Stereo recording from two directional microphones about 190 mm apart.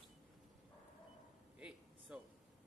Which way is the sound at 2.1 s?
5° right (ahead or behind).